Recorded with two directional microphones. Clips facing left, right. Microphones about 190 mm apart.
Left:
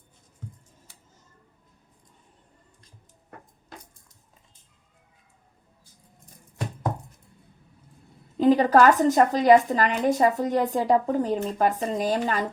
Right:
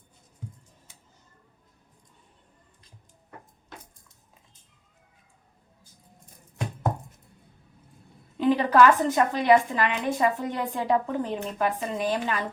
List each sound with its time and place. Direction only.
8.4 s a woman's voice: 40° left (ahead or behind)